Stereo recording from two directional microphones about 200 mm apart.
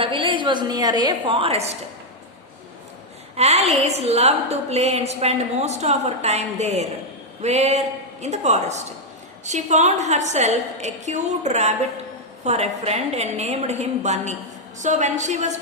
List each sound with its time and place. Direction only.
0.0 s a woman's voice: 25° right (ahead or behind)
3.3 s a woman's voice: 30° right (ahead or behind)